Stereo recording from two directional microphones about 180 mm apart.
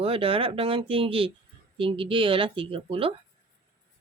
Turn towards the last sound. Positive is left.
turn(degrees=-30)  # may be behind; listen again after turning